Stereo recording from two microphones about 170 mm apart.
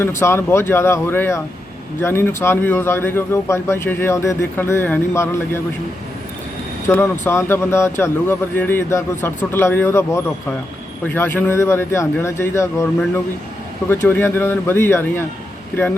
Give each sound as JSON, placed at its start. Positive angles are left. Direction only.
{"t": 0.2, "sound": "speech", "side_deg": 15}
{"t": 6.8, "sound": "speech", "side_deg": 15}
{"t": 13.9, "sound": "speech", "side_deg": 15}